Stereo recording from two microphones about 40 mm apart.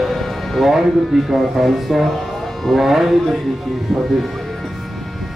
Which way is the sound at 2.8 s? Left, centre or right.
Centre.